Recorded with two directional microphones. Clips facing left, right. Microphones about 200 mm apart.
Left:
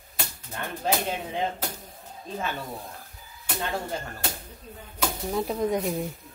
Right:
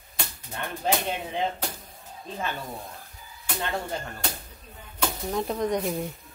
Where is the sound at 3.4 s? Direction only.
Centre (ahead or behind).